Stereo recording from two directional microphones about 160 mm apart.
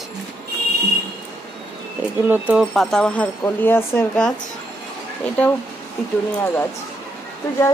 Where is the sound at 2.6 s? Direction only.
Centre (ahead or behind).